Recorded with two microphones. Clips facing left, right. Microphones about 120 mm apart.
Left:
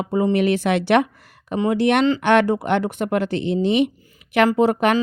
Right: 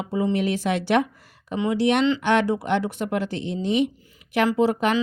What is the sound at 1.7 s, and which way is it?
A woman's voice, 55° left (ahead or behind).